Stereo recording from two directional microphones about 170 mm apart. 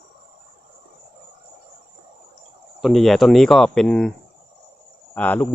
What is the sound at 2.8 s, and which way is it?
Speech, centre (ahead or behind).